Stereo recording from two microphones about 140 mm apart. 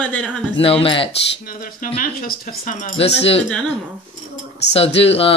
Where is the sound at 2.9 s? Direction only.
45° left (ahead or behind).